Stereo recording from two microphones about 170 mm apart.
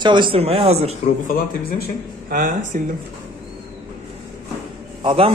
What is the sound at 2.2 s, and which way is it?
Speech, 55° right (ahead or behind).